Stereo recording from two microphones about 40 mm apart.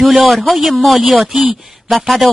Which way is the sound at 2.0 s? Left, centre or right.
Centre.